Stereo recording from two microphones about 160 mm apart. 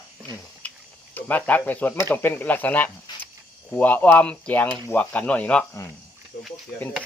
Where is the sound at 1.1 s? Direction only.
10° left (ahead or behind).